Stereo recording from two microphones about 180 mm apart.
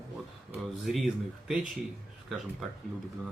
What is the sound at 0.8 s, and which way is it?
Speech, centre (ahead or behind).